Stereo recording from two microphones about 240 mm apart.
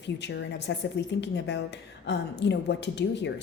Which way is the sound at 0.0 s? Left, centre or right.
Left.